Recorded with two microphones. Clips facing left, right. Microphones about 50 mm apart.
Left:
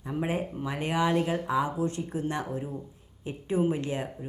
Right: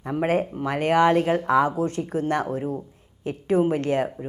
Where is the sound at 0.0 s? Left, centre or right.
Right.